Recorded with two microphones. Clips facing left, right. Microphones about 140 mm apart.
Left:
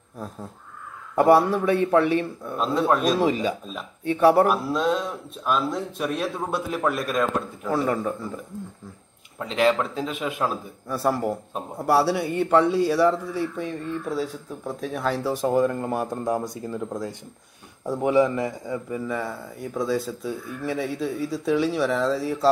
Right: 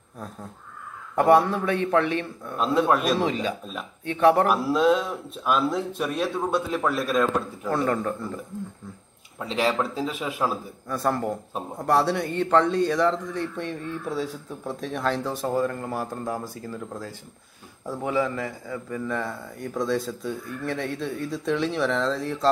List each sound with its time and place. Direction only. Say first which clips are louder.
1.1 s a man's voice: left 1 dB; 5° left (ahead or behind)
9.6 s a man's voice: left 3 dB; 5° right (ahead or behind)
10.9 s a man's voice: left 2 dB; 5° left (ahead or behind)